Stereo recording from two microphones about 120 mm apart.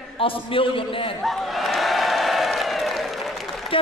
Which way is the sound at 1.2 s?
Centre (ahead or behind).